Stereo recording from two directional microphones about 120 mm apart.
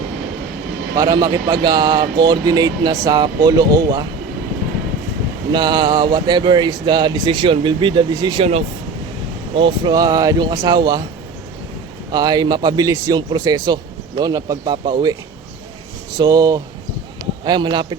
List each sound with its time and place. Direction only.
0.9 s speech: 30° right (ahead or behind)
5.5 s speech: 35° right (ahead or behind)
9.6 s speech: 40° right (ahead or behind)
12.1 s speech: 35° right (ahead or behind)
16.1 s speech: 35° right (ahead or behind)